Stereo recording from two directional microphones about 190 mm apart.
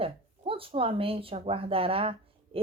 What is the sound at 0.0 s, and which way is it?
A woman's voice, 30° right (ahead or behind).